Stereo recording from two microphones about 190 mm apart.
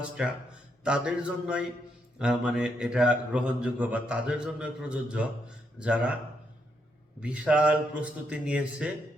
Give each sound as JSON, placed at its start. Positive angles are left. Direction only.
{"t": 0.2, "sound": "a man's voice", "side_deg": -5}
{"t": 7.2, "sound": "a man's voice", "side_deg": -5}